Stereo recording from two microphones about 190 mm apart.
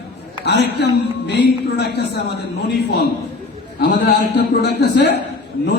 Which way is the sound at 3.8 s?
60° left (ahead or behind).